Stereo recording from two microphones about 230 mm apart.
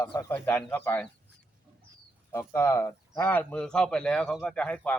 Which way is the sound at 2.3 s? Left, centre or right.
Centre.